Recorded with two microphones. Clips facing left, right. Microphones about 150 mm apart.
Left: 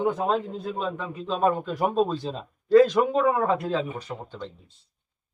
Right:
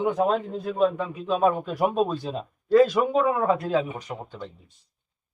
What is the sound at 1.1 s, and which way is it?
Speech, 10° right (ahead or behind).